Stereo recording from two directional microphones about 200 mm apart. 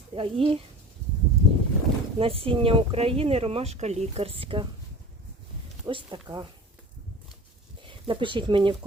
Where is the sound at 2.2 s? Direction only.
30° right (ahead or behind).